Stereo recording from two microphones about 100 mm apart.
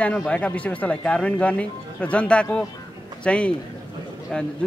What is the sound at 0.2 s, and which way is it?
Speech, 10° left (ahead or behind).